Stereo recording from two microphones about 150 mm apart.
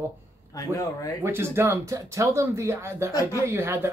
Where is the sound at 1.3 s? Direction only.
15° right (ahead or behind).